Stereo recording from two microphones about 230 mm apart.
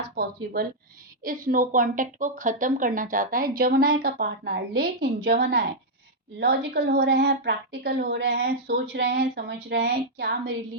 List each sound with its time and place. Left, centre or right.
0.2 s a woman's voice: right